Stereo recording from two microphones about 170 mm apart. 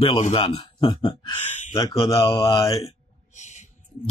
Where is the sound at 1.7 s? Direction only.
20° left (ahead or behind).